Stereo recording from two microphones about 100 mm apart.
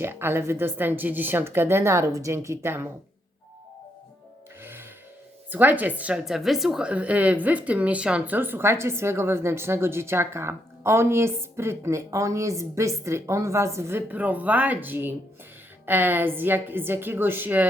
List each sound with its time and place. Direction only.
0.0 s speech: 25° right (ahead or behind)
4.6 s gasp: 25° right (ahead or behind)
5.5 s speech: 15° right (ahead or behind)
6.2 s speech: 5° right (ahead or behind)